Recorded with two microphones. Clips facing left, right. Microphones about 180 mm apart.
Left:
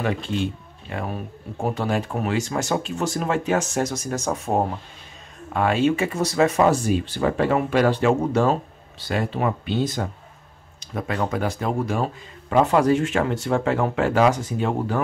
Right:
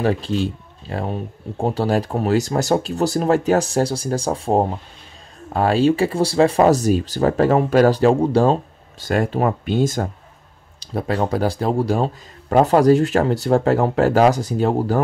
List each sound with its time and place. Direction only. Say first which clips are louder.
0.0 s speech: right 4 dB; 35° right (ahead or behind)
9.0 s speech: right 5 dB; 45° right (ahead or behind)
10.8 s speech: right 4 dB; 35° right (ahead or behind)